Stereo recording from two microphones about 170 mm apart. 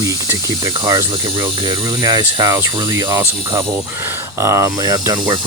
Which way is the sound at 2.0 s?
20° right (ahead or behind).